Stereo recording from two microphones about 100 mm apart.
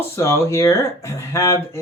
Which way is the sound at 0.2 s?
30° left (ahead or behind).